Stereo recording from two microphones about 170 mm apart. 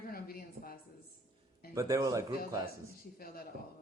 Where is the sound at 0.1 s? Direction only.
60° left (ahead or behind).